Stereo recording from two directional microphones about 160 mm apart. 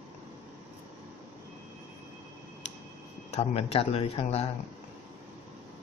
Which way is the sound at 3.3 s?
40° left (ahead or behind).